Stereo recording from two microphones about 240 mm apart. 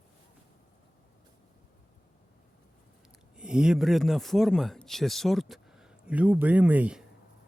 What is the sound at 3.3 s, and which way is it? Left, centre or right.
A man's voice, centre.